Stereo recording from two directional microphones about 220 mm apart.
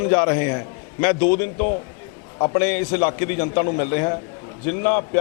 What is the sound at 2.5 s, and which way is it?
A man's voice, 10° left (ahead or behind).